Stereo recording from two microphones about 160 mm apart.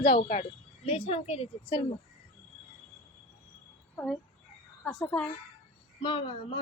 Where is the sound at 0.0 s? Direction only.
65° left (ahead or behind).